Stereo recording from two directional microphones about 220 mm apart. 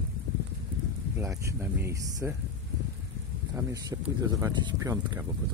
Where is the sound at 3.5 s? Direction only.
15° right (ahead or behind).